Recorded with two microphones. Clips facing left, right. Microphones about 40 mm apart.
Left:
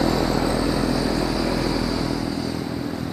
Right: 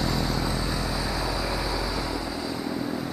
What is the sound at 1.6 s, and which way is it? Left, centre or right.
Vehicle, centre.